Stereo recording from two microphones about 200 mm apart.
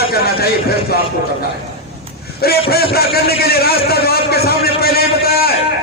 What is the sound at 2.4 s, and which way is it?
A man's voice, 50° left (ahead or behind).